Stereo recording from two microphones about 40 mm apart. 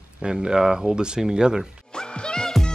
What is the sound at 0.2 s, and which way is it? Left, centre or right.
Speech, centre.